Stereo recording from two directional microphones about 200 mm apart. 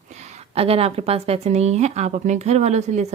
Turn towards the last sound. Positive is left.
turn(degrees=-35)  # may be behind; listen again after turning